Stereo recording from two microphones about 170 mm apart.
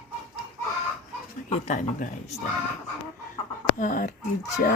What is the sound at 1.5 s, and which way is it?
Speech, 45° left (ahead or behind).